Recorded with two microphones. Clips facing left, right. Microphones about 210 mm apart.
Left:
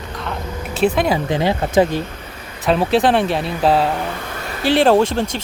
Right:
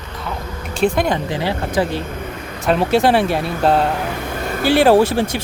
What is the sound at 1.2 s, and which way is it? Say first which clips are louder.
Speech: left 3 dB; 20° left (ahead or behind).